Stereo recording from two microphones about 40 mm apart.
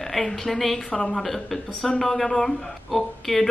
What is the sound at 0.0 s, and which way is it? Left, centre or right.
A woman's voice, centre.